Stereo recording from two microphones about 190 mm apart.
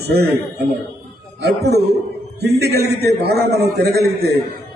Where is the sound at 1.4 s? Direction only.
60° right (ahead or behind).